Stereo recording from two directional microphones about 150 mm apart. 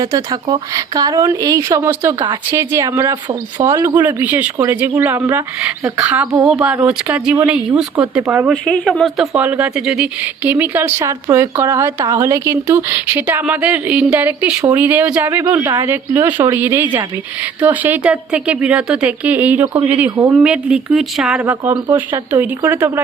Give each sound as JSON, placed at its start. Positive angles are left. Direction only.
{"t": 0.0, "sound": "a woman's voice", "side_deg": -25}
{"t": 8.6, "sound": "speech", "side_deg": 5}
{"t": 20.1, "sound": "a woman's voice", "side_deg": -20}
{"t": 20.3, "sound": "speech", "side_deg": -5}